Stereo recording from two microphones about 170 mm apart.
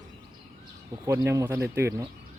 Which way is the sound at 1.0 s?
15° right (ahead or behind).